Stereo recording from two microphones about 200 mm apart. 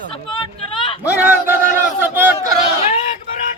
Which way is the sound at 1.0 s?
10° right (ahead or behind).